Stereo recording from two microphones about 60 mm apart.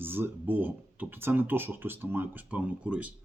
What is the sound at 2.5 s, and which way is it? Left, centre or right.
Speech, right.